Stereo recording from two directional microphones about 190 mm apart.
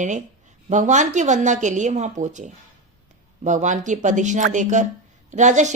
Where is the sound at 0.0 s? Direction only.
40° right (ahead or behind).